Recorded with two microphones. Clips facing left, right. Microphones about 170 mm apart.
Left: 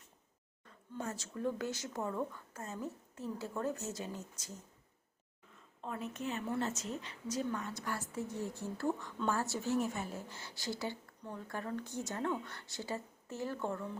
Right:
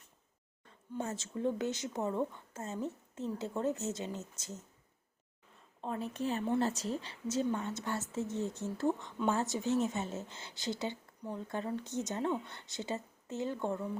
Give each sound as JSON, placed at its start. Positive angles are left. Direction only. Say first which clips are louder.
{"t": 0.9, "sound": "a woman's voice", "louder": "right 3 dB", "side_deg": -25}
{"t": 5.8, "sound": "a woman's voice", "louder": "right 4 dB", "side_deg": -35}
{"t": 11.4, "sound": "a woman's voice", "louder": "right 2 dB", "side_deg": -20}